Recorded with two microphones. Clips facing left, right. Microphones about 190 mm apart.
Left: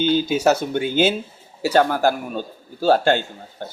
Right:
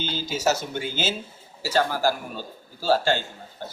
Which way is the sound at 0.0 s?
55° left (ahead or behind).